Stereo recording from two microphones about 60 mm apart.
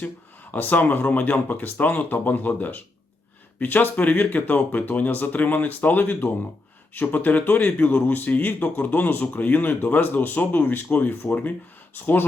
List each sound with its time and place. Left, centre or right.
0.5 s speech: left